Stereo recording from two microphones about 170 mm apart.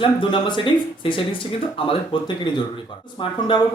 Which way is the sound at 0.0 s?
30° left (ahead or behind).